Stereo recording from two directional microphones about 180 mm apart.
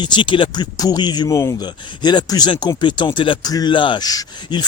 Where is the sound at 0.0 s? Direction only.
25° left (ahead or behind).